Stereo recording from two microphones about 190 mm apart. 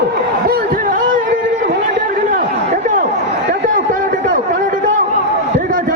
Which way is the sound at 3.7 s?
45° right (ahead or behind).